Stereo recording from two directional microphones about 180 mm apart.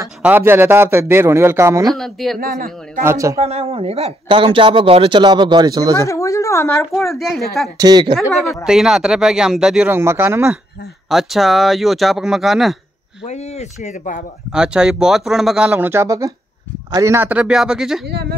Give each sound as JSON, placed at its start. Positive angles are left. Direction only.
{"t": 0.0, "sound": "a man's voice", "side_deg": -10}
{"t": 2.0, "sound": "speech", "side_deg": 0}
{"t": 3.0, "sound": "a man's voice", "side_deg": -15}
{"t": 3.3, "sound": "speech", "side_deg": -35}
{"t": 5.9, "sound": "speech", "side_deg": 15}
{"t": 7.1, "sound": "speech", "side_deg": 0}
{"t": 7.7, "sound": "speech", "side_deg": -20}
{"t": 8.3, "sound": "speech", "side_deg": 0}
{"t": 11.1, "sound": "speech", "side_deg": 0}
{"t": 13.2, "sound": "speech", "side_deg": 40}
{"t": 14.5, "sound": "speech", "side_deg": -5}